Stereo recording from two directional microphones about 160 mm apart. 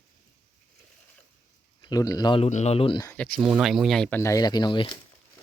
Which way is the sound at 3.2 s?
5° left (ahead or behind).